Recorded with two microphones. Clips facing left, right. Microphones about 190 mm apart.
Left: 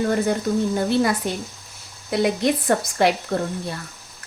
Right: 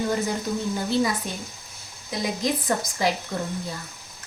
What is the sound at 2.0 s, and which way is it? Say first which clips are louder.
Speech: left 6 dB; 65° left (ahead or behind).